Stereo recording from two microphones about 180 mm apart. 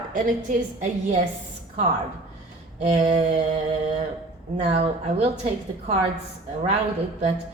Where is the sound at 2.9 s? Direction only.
40° right (ahead or behind).